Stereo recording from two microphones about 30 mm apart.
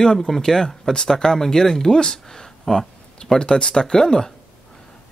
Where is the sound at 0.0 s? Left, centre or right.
Left.